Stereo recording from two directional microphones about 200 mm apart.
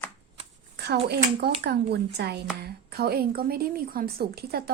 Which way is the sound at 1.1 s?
55° right (ahead or behind).